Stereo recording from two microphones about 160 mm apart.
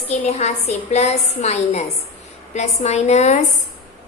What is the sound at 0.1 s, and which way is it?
A woman's voice, 45° left (ahead or behind).